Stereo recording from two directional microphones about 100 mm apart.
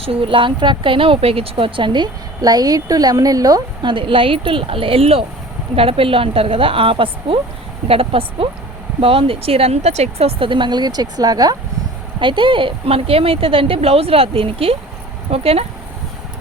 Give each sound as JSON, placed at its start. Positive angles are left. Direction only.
{"t": 0.0, "sound": "speech", "side_deg": -65}
{"t": 3.9, "sound": "a woman's voice", "side_deg": -60}
{"t": 5.7, "sound": "a woman's voice", "side_deg": -75}
{"t": 10.5, "sound": "speech", "side_deg": -50}
{"t": 12.2, "sound": "speech", "side_deg": -55}